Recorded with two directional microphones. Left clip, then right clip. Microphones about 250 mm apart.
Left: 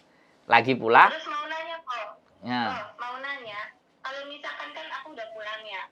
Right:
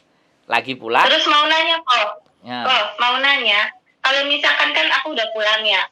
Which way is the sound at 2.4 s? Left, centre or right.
Left.